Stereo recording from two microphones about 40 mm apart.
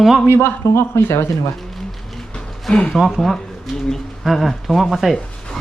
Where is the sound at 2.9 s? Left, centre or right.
Centre.